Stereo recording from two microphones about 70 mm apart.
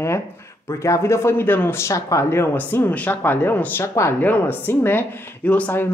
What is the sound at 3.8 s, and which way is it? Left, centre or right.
Speech, left.